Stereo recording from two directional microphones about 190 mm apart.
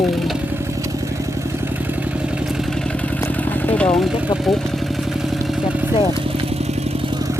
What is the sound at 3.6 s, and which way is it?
Speech, 5° left (ahead or behind).